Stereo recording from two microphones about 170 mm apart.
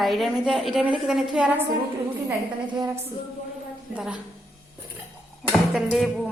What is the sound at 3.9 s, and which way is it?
Speech, 5° right (ahead or behind).